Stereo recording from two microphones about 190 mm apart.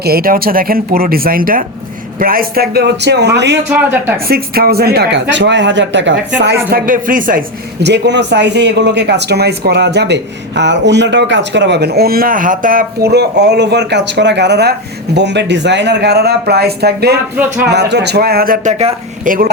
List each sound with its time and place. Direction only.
0.0 s speech: 50° right (ahead or behind)
3.7 s speech: 10° right (ahead or behind)
4.3 s speech: 55° right (ahead or behind)
6.7 s speech: 50° right (ahead or behind)
7.8 s speech: 65° right (ahead or behind); by 19.3 s 35° right (ahead or behind)